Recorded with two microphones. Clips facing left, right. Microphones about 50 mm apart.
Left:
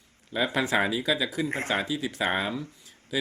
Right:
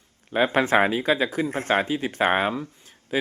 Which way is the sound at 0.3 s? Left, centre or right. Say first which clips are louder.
Right 6 dB; right.